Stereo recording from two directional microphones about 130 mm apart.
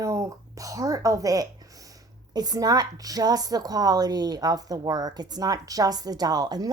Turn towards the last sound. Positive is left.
turn(degrees=-30)  # may be behind; listen again after turning